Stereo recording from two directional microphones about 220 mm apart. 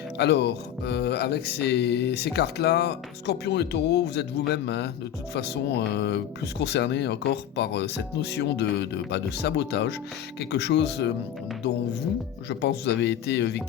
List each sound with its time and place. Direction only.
0.2 s music: 50° left (ahead or behind)
12.5 s music: 50° left (ahead or behind)